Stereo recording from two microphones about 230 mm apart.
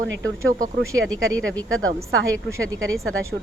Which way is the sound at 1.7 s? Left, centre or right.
Right.